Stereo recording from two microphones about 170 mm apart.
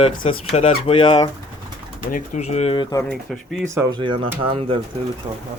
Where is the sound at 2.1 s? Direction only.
45° left (ahead or behind); by 3.0 s 30° left (ahead or behind).